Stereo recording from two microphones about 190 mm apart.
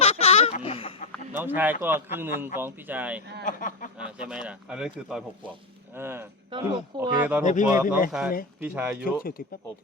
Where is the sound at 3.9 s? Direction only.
5° right (ahead or behind).